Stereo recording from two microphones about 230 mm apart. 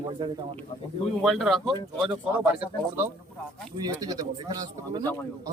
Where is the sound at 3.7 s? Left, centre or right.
Centre.